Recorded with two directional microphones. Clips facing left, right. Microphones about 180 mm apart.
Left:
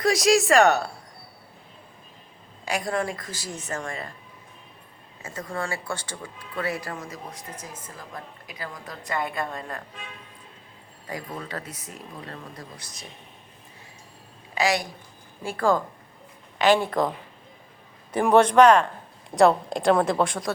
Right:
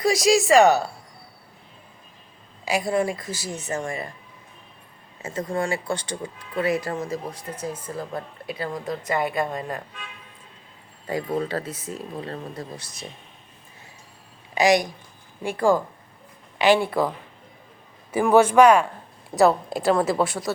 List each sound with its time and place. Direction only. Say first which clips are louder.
0.0 s a woman's voice: right 1 dB; centre (ahead or behind)
2.6 s a woman's voice: right 4 dB; 5° right (ahead or behind)
5.2 s a woman's voice: right 6 dB; 20° right (ahead or behind)
11.0 s a woman's voice: right 9 dB; 30° right (ahead or behind)
14.5 s a woman's voice: right 6 dB; 20° right (ahead or behind)
18.1 s a woman's voice: right 1 dB; 5° right (ahead or behind)